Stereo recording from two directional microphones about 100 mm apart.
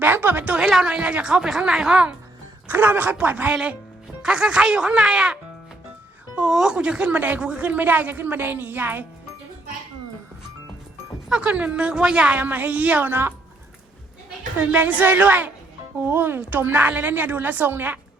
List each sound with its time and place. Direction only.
0.0 s speech: 20° right (ahead or behind)
2.6 s speech: 20° right (ahead or behind)
11.3 s speech: 10° right (ahead or behind)
14.6 s a woman's voice: 15° right (ahead or behind)